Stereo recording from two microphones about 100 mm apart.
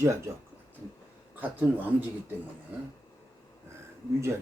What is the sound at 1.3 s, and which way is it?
Speech, 15° right (ahead or behind).